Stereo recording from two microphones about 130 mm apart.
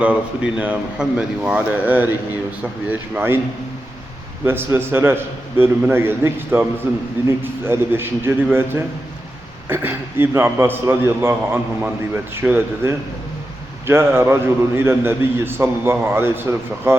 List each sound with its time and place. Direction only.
0.0 s a man's voice: 10° right (ahead or behind)
4.4 s a man's voice: 15° right (ahead or behind)
9.6 s a man's voice: 15° right (ahead or behind)